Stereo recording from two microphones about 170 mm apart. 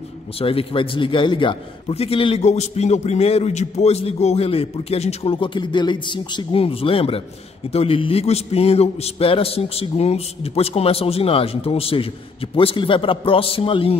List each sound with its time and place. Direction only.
0.4 s a man's voice: 35° left (ahead or behind)